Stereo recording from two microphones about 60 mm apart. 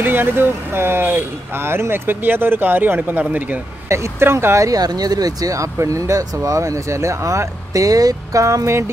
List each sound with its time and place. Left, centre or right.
0.0 s speech: right
3.9 s speech: right
4.6 s speech: right
7.7 s speech: right